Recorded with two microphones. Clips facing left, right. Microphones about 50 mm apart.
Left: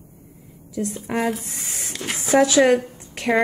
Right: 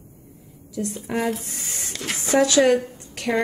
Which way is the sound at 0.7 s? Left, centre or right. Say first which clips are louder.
Left 1 dB; centre.